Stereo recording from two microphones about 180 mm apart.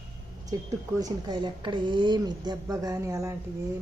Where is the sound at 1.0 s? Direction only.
20° right (ahead or behind).